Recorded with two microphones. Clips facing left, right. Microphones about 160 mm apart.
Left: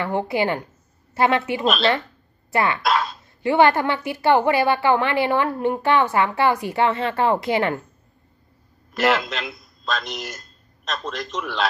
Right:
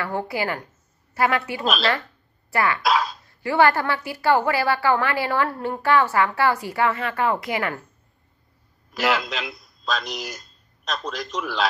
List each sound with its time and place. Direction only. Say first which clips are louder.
0.0 s a woman's voice: left 4 dB; 20° left (ahead or behind)
2.8 s dog: even; centre (ahead or behind)
3.4 s a woman's voice: left 2 dB; 20° left (ahead or behind)
8.9 s a man's voice: left 3 dB; centre (ahead or behind)